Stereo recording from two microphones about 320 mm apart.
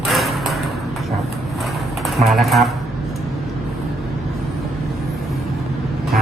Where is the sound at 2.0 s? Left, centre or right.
Centre.